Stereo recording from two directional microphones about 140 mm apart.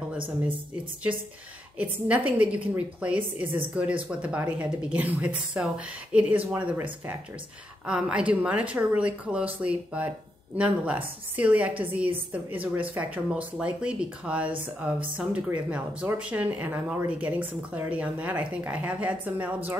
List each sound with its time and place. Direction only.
1.8 s speech: 10° right (ahead or behind)